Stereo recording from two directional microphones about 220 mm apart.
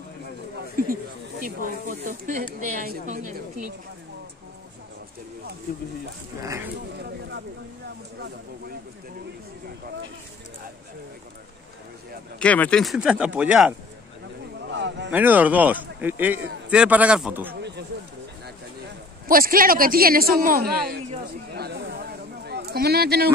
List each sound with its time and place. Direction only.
1.4 s speech: 40° right (ahead or behind)
6.4 s speech: 15° right (ahead or behind)
7.0 s speech: 50° right (ahead or behind)
12.4 s speech: 5° left (ahead or behind)
14.7 s a sound: 55° right (ahead or behind)
15.0 s speech: 10° right (ahead or behind)
17.6 s a sound: 50° right (ahead or behind)
19.2 s speech: 40° right (ahead or behind)
21.5 s a sound: 50° right (ahead or behind)